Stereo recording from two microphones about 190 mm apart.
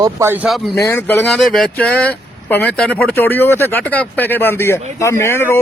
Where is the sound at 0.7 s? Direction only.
15° left (ahead or behind).